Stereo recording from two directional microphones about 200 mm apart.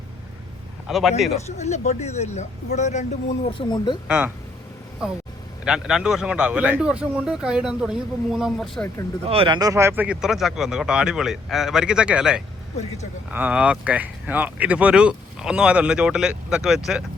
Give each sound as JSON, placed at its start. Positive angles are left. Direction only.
{"t": 0.9, "sound": "a man's voice", "side_deg": 0}
{"t": 1.5, "sound": "speech", "side_deg": 35}
{"t": 5.6, "sound": "speech", "side_deg": -5}
{"t": 9.2, "sound": "speech", "side_deg": -30}